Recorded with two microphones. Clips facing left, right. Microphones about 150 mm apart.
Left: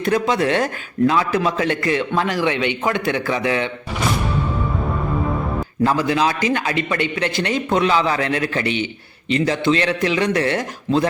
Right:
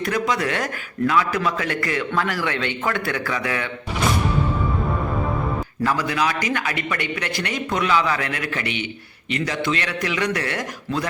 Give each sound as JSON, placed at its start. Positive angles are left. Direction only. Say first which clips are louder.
{"t": 0.0, "sound": "a man's voice", "louder": "left 4 dB", "side_deg": 25}
{"t": 5.8, "sound": "a man's voice", "louder": "left 5 dB", "side_deg": 25}